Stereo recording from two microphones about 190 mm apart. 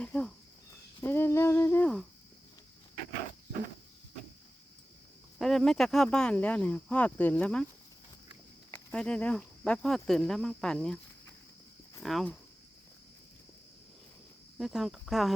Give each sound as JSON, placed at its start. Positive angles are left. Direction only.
{"t": 0.0, "sound": "cricket", "side_deg": 5}
{"t": 1.0, "sound": "humming", "side_deg": 10}
{"t": 5.4, "sound": "speech", "side_deg": 0}
{"t": 8.7, "sound": "speech", "side_deg": 5}
{"t": 14.6, "sound": "speech", "side_deg": 0}